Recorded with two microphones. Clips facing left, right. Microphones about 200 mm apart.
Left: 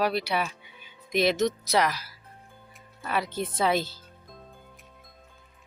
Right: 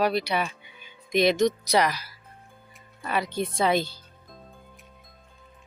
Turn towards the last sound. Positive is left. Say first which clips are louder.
# right 2 dB
turn(degrees=5)  # may be behind; listen again after turning